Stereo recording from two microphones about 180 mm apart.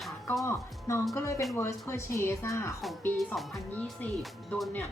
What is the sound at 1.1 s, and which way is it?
Speech, 15° left (ahead or behind).